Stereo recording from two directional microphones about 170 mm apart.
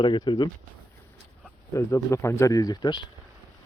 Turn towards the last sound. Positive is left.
turn(degrees=25)  # may be behind; listen again after turning